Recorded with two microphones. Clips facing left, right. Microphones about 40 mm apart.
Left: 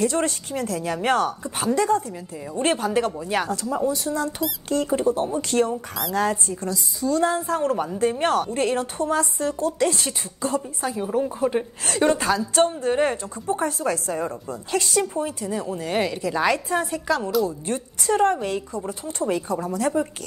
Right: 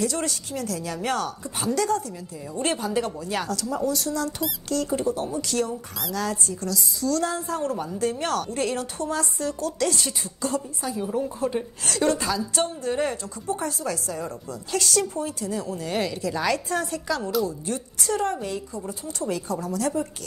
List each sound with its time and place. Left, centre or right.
0.0 s a woman's voice: left; by 17.3 s centre
17.5 s a woman's voice: left